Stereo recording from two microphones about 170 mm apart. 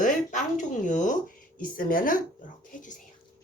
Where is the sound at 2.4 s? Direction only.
55° left (ahead or behind).